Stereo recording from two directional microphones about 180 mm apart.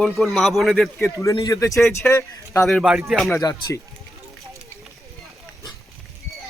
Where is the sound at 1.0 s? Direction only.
15° left (ahead or behind).